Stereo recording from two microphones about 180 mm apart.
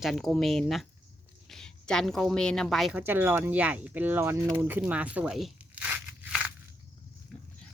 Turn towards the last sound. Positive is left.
turn(degrees=-10)  # may be behind; listen again after turning